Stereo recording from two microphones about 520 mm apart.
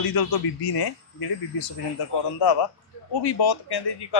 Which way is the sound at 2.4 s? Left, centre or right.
Left.